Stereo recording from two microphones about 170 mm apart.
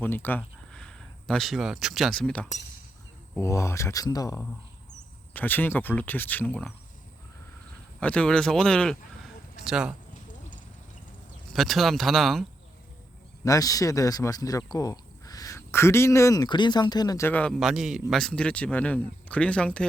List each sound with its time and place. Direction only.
0.0 s speech: 10° left (ahead or behind)
3.3 s speech: 15° left (ahead or behind)
5.3 s speech: 10° left (ahead or behind)
7.9 s speech: 5° left (ahead or behind)
11.5 s speech: centre (ahead or behind)
13.4 s speech: 20° left (ahead or behind)